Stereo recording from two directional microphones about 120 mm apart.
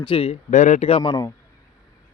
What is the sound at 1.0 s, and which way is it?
Speech, 35° left (ahead or behind).